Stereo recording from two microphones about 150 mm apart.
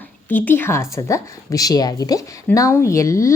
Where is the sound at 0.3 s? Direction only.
10° left (ahead or behind).